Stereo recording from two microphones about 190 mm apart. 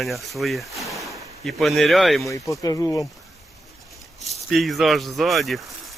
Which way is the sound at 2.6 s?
15° left (ahead or behind).